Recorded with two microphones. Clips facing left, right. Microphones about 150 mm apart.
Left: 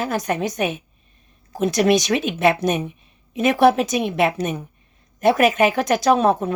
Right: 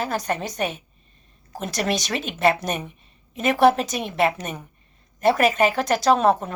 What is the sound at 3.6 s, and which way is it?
A woman's voice, 55° left (ahead or behind).